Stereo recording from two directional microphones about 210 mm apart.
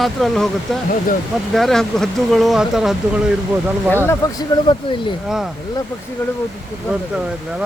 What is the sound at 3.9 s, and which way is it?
Speech, 10° left (ahead or behind).